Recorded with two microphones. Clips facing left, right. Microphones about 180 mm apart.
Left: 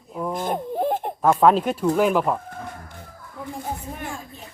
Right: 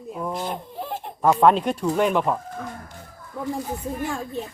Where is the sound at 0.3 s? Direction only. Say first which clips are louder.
Left 5 dB; 50° left (ahead or behind).